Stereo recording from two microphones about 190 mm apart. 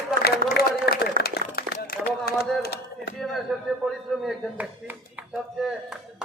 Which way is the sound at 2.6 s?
55° left (ahead or behind).